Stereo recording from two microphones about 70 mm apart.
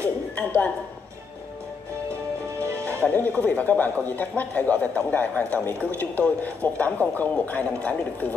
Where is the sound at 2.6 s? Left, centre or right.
Right.